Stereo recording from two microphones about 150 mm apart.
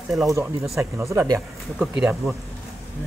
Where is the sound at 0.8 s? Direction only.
20° right (ahead or behind).